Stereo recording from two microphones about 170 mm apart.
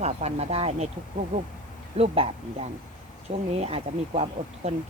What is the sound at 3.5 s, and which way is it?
Speech, 35° right (ahead or behind).